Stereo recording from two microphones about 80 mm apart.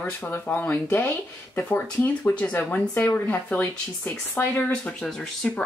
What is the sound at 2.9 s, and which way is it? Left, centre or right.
Speech, left.